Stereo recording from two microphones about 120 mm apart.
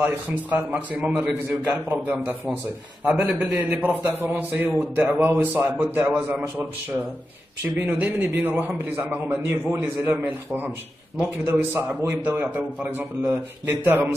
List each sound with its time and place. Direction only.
0.5 s a man's voice: 15° right (ahead or behind)
7.9 s a man's voice: 15° right (ahead or behind)